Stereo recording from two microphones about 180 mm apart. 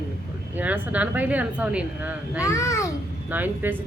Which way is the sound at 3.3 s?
10° right (ahead or behind).